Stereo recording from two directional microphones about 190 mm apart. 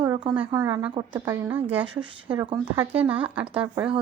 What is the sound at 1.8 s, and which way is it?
Speech, 25° right (ahead or behind).